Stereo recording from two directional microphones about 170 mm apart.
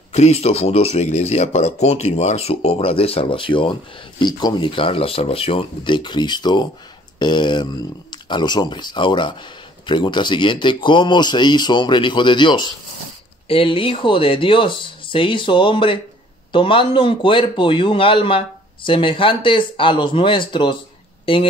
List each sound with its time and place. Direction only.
0.1 s speech: 40° left (ahead or behind)